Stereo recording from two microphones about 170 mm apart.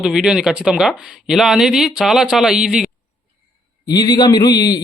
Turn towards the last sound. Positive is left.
turn(degrees=25)  # may be behind; listen again after turning